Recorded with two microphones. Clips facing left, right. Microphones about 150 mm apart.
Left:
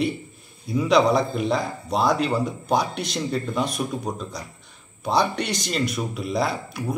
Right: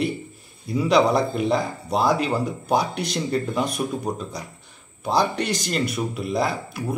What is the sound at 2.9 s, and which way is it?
Speech, 55° right (ahead or behind).